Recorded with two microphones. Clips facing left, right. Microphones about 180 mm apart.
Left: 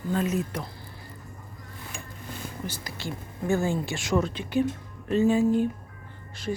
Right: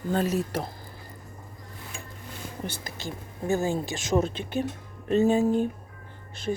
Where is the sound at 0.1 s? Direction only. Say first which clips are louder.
Right 1 dB; 35° right (ahead or behind).